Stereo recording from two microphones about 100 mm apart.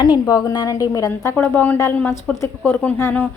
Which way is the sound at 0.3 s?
35° left (ahead or behind).